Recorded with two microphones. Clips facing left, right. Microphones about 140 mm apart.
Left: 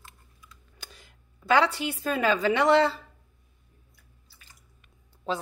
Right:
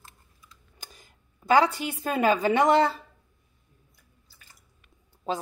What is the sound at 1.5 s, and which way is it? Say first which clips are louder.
A woman's voice: right 2 dB; 45° right (ahead or behind).